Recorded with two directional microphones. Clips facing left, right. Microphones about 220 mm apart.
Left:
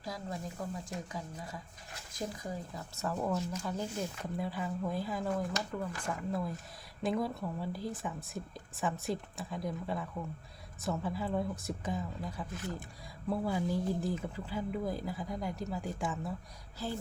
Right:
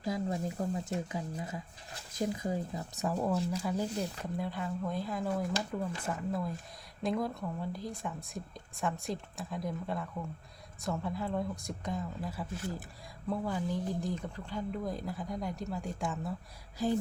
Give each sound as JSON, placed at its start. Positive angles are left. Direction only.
{"t": 0.0, "sound": "speech", "side_deg": -20}
{"t": 4.2, "sound": "a woman's voice", "side_deg": 0}
{"t": 5.7, "sound": "speech", "side_deg": -15}
{"t": 6.1, "sound": "a woman's voice", "side_deg": 0}
{"t": 13.3, "sound": "a woman's voice", "side_deg": 10}
{"t": 16.7, "sound": "speech", "side_deg": -15}